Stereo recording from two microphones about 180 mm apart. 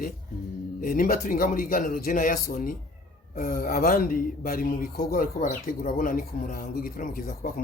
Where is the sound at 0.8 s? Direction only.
50° left (ahead or behind).